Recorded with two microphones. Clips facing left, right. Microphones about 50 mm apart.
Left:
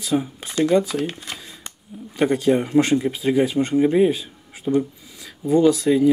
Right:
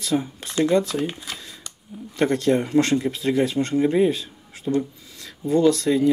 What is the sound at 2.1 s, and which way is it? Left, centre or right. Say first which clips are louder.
Speech: left 2 dB; centre.